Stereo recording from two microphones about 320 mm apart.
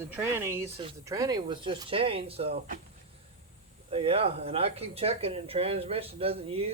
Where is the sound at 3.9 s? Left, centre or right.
Centre.